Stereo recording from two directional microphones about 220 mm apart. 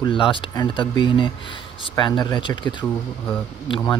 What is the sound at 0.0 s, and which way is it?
Speech, 20° left (ahead or behind).